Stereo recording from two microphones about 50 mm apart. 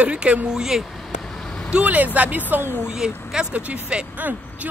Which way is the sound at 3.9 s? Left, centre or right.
Centre.